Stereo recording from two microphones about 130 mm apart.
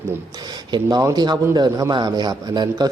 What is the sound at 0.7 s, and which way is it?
A man's voice, 30° right (ahead or behind).